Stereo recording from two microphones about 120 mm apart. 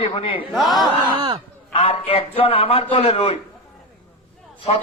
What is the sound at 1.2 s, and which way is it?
Speech, 50° right (ahead or behind).